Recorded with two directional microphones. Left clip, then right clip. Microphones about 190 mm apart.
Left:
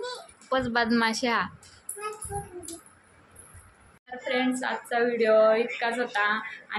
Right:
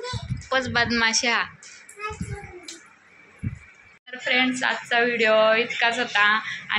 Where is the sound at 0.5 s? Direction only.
15° left (ahead or behind).